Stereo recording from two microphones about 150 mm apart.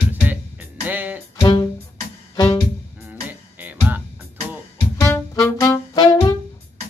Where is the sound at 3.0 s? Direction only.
10° right (ahead or behind).